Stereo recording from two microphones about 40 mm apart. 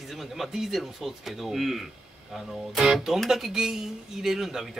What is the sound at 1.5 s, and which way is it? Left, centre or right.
Speech, centre.